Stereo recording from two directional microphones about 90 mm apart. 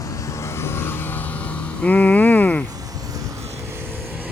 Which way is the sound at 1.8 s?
15° left (ahead or behind).